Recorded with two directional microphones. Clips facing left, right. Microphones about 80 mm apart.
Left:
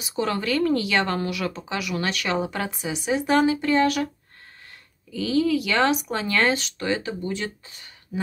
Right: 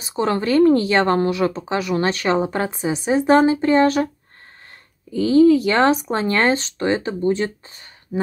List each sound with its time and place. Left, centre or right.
0.0 s speech: right
5.1 s speech: right